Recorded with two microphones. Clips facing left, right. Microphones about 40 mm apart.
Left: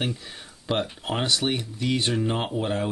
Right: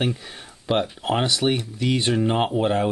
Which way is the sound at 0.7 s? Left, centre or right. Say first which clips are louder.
Right 5 dB; centre.